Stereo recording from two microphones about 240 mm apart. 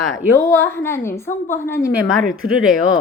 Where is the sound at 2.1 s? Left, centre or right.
Centre.